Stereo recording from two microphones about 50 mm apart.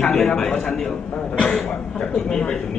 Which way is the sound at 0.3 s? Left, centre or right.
Centre.